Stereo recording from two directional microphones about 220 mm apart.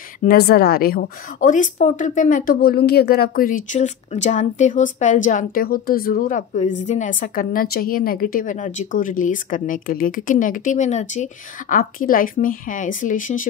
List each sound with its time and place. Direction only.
0.2 s a woman's voice: 45° left (ahead or behind)